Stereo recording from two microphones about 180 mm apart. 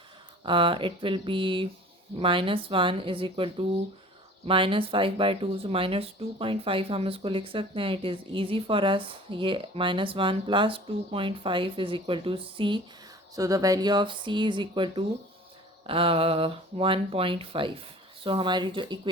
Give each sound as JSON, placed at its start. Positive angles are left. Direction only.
{"t": 0.4, "sound": "speech", "side_deg": -30}